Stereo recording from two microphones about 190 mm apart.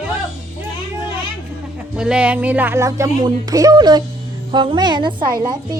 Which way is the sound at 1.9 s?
5° right (ahead or behind).